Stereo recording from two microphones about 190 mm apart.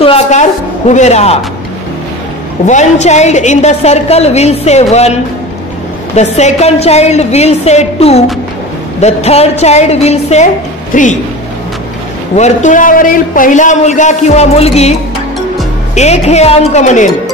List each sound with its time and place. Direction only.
0.0 s a woman's voice: 35° left (ahead or behind)
2.6 s a woman's voice: 40° left (ahead or behind)
12.4 s a woman's voice: 40° left (ahead or behind)